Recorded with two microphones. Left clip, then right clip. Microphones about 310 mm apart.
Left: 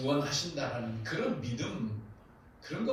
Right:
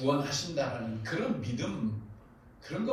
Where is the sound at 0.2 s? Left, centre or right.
Right.